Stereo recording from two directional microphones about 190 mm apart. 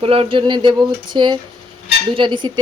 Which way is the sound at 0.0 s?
30° right (ahead or behind).